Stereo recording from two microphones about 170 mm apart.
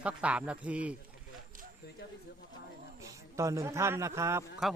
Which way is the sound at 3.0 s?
20° right (ahead or behind).